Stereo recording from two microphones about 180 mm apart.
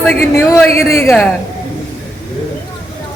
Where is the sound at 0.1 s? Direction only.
10° left (ahead or behind).